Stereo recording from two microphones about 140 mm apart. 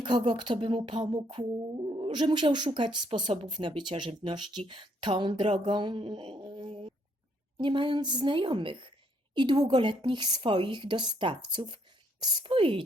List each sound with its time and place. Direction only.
0.0 s speech: 35° right (ahead or behind)